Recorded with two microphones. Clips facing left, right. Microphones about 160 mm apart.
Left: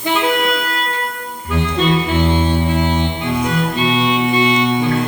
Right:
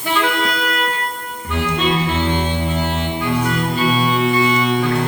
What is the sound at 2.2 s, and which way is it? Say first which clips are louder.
Music: left 3 dB; 10° left (ahead or behind).